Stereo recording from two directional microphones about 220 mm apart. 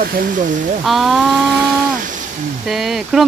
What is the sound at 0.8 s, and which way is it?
Speech, centre (ahead or behind).